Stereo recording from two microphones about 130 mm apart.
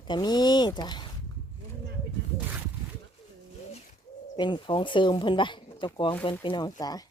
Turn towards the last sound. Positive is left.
turn(degrees=30)  # may be behind; listen again after turning